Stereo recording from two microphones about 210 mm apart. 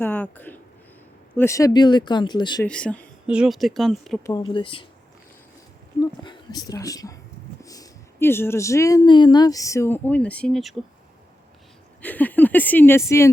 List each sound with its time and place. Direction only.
0.0 s a sound: 10° left (ahead or behind)
1.4 s speech: 15° left (ahead or behind)
2.6 s speech: 5° left (ahead or behind)
3.2 s speech: 5° right (ahead or behind)
4.2 s speech: 20° left (ahead or behind)
6.0 s speech: 20° left (ahead or behind); by 10.8 s centre (ahead or behind)
12.0 s speech: 10° left (ahead or behind)